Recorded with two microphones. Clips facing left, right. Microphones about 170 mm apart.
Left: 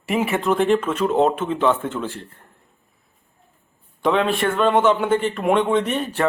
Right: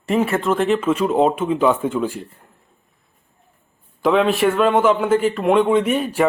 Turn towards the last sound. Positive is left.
turn(degrees=-10)  # may be behind; listen again after turning